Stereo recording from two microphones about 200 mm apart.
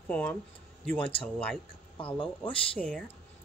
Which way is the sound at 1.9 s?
25° left (ahead or behind).